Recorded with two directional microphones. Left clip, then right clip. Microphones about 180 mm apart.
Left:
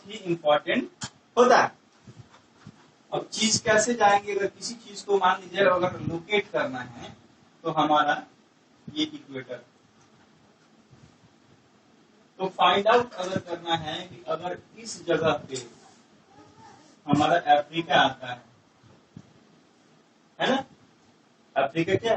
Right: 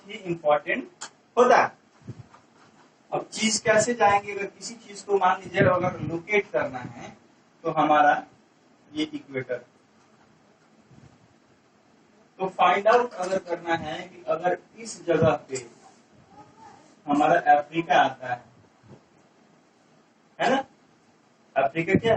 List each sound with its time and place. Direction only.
0.1 s speech: 25° left (ahead or behind)
3.3 s a man's voice: 25° left (ahead or behind)
12.4 s a man's voice: 25° left (ahead or behind)
17.2 s a man's voice: 30° left (ahead or behind)
20.3 s a sound: 25° left (ahead or behind)
21.5 s a man's voice: 25° left (ahead or behind)